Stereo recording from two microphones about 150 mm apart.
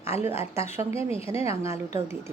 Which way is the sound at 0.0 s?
15° right (ahead or behind).